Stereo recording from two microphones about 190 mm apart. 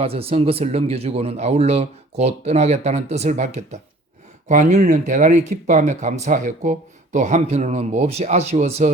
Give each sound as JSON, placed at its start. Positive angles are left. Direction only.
{"t": 0.0, "sound": "speech", "side_deg": -30}